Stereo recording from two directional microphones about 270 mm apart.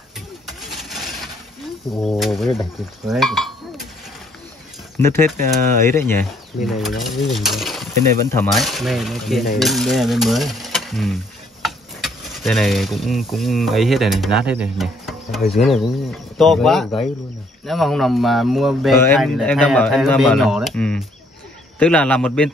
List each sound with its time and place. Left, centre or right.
0.6 s vehicle: centre
1.9 s speech: centre
4.9 s speech: centre